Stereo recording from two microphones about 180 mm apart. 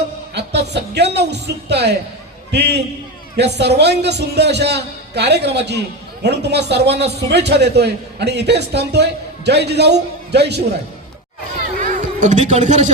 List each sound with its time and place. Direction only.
0.7 s a man's voice: 70° right (ahead or behind)
11.8 s music: 45° right (ahead or behind)